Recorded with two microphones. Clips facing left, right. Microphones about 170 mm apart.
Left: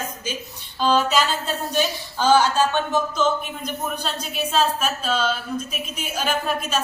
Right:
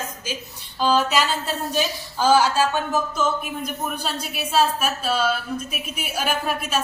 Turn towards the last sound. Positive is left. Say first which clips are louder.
# left 1 dB
turn(degrees=-5)  # may be behind; listen again after turning